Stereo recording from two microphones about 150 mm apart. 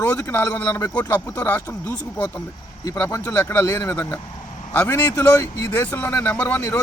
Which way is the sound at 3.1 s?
15° left (ahead or behind).